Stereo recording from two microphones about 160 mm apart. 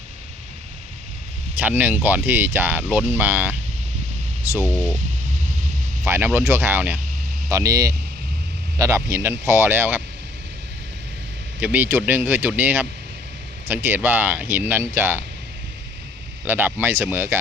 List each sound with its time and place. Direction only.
1.5 s speech: 10° right (ahead or behind)
4.7 s speech: 10° left (ahead or behind)
6.1 s speech: 15° right (ahead or behind)
11.6 s speech: 10° right (ahead or behind)
16.5 s speech: 10° right (ahead or behind)